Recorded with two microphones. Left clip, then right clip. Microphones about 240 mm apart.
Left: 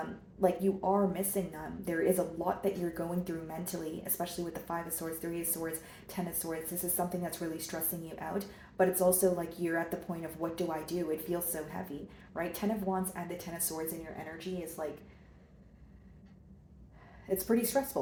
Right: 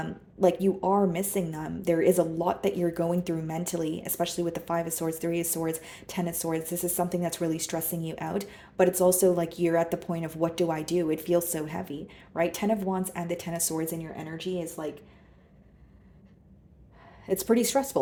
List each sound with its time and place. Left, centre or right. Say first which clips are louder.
0.3 s a woman's voice: right 6 dB; right
17.2 s a woman's voice: right 6 dB; right